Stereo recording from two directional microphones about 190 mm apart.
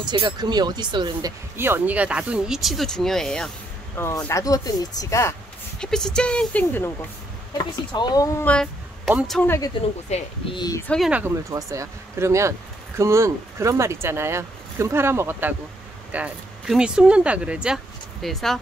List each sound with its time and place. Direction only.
0.0 s speech: 25° right (ahead or behind)
1.6 s speech: 10° right (ahead or behind); by 5.3 s 15° left (ahead or behind)
5.8 s speech: 5° left (ahead or behind)
7.5 s speech: 20° left (ahead or behind)
8.5 s a sound: 5° left (ahead or behind)
9.3 s speech: 10° left (ahead or behind)
10.0 s speech: 35° left (ahead or behind)
10.6 s speech: 20° left (ahead or behind)
10.9 s speech: 5° right (ahead or behind)